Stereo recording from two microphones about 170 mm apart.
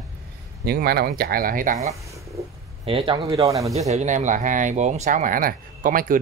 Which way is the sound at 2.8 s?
30° right (ahead or behind).